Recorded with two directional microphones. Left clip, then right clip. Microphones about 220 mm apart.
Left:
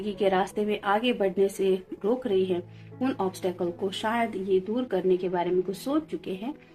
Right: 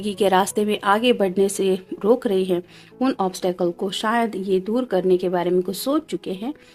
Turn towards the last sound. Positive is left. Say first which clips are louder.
# right 5 dB
turn(degrees=-55)  # may be behind; listen again after turning